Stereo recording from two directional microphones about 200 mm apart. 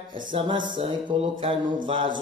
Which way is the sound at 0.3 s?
25° right (ahead or behind).